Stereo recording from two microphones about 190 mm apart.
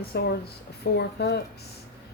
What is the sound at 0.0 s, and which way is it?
A woman's voice, 55° left (ahead or behind).